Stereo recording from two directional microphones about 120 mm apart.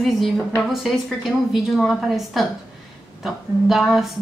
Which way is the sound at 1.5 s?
Centre (ahead or behind).